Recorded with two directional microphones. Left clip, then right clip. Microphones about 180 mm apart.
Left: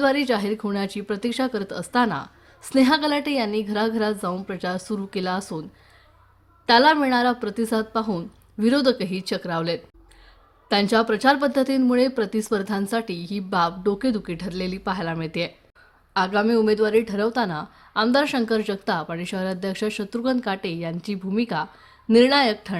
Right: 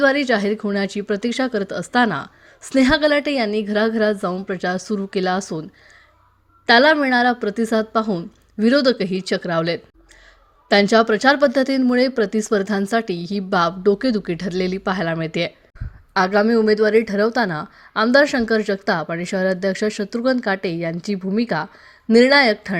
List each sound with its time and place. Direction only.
0.0 s speech: 20° right (ahead or behind)
6.7 s speech: 20° right (ahead or behind)